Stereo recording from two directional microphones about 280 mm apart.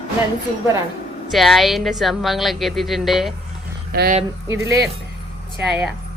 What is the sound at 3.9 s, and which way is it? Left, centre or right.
Speech, right.